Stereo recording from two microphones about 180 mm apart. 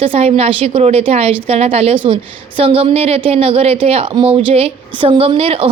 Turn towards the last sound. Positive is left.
turn(degrees=-30)  # may be behind; listen again after turning